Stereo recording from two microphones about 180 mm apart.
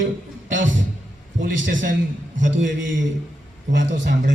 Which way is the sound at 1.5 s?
90° right.